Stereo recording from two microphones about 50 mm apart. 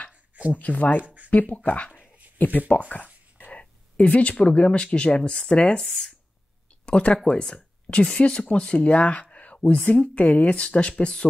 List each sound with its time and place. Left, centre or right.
0.5 s speech: left
1.0 s a sound: right
1.3 s speech: left
3.3 s a sound: left
4.9 s speech: left
6.9 s speech: left